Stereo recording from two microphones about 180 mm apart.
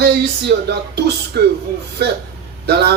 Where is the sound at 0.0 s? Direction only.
65° right (ahead or behind).